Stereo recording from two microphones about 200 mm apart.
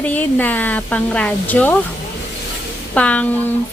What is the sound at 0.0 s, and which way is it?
Speech, 10° left (ahead or behind).